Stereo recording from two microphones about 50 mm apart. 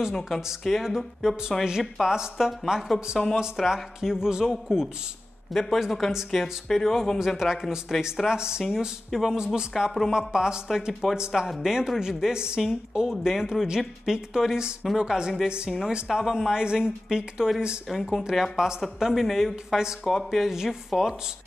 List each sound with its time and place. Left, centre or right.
0.3 s speech: centre
5.5 s speech: centre
8.3 s speech: centre
10.9 s speech: centre
16.1 s speech: centre
17.8 s speech: centre
20.1 s speech: centre